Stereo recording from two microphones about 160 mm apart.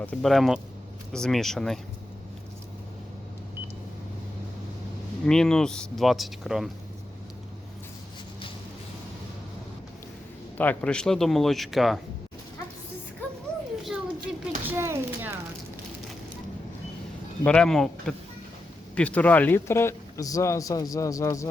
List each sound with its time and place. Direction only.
0.0 s speech: 5° left (ahead or behind)
5.2 s speech: 5° left (ahead or behind)
10.6 s speech: 10° left (ahead or behind)
13.8 s a sound: 5° right (ahead or behind)
14.8 s a sound: 15° right (ahead or behind)
17.4 s a man's voice: 5° left (ahead or behind)